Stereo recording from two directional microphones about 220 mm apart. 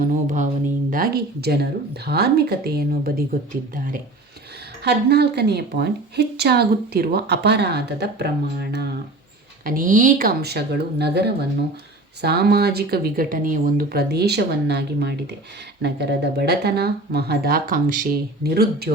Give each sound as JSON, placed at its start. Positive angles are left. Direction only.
{"t": 0.0, "sound": "speech", "side_deg": -35}
{"t": 4.8, "sound": "speech", "side_deg": -50}